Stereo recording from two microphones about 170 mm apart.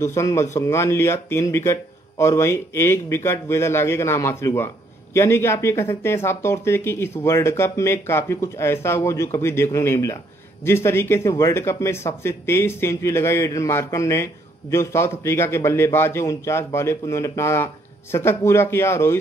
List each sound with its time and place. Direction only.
0.0 s speech: 15° left (ahead or behind)